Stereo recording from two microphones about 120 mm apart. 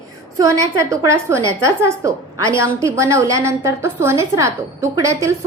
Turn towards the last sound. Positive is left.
turn(degrees=-25)  # may be behind; listen again after turning